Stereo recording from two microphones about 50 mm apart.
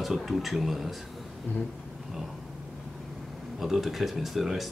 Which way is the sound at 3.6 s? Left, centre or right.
Centre.